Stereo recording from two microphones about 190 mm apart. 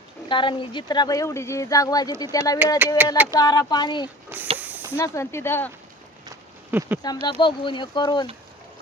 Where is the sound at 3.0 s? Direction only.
10° right (ahead or behind).